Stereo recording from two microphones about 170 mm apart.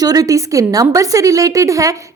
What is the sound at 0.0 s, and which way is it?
A woman's voice, 20° right (ahead or behind).